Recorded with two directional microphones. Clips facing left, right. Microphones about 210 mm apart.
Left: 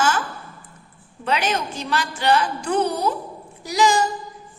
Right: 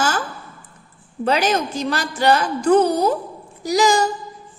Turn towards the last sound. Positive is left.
turn(degrees=-40)  # may be behind; listen again after turning